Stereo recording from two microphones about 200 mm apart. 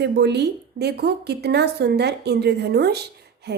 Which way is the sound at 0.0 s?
55° right (ahead or behind).